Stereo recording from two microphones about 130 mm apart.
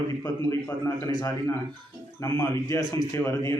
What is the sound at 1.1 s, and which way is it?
Speech, 35° left (ahead or behind).